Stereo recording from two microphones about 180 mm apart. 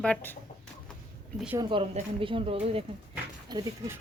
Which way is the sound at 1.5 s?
30° right (ahead or behind).